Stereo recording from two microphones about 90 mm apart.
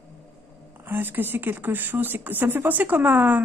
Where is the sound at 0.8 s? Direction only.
25° right (ahead or behind).